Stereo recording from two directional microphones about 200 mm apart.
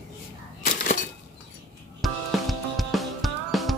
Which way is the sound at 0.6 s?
45° left (ahead or behind).